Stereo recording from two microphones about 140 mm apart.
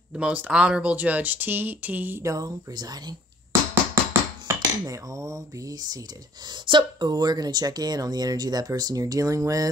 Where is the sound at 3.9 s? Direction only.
20° right (ahead or behind).